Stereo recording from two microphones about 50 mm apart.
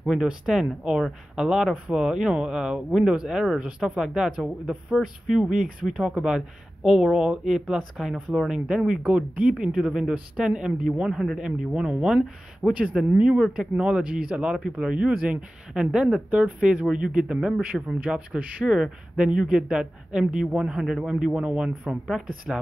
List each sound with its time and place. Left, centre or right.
0.0 s speech: centre
16.3 s speech: right
22.5 s speech: centre